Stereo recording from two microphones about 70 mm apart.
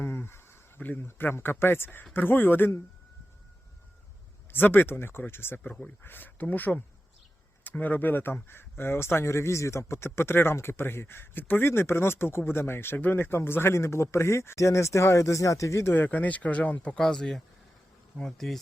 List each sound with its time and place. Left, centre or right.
0.0 s a sound: left
0.8 s speech: left
4.5 s speech: left
16.0 s speech: left
18.2 s insect: centre